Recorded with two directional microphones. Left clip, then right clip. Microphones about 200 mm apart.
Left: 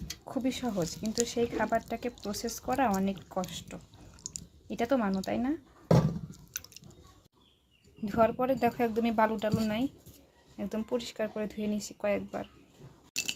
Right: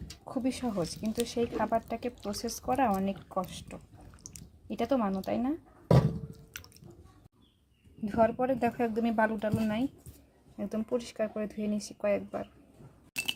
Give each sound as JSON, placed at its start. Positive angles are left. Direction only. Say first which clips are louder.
{"t": 0.3, "sound": "speech", "louder": "even", "side_deg": -5}
{"t": 4.2, "sound": "drip", "louder": "left 7 dB", "side_deg": -40}
{"t": 4.7, "sound": "speech", "louder": "even", "side_deg": -5}
{"t": 8.0, "sound": "speech", "louder": "even", "side_deg": 0}